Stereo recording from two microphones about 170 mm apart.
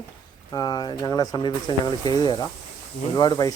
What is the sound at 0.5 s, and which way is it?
Speech, 25° left (ahead or behind).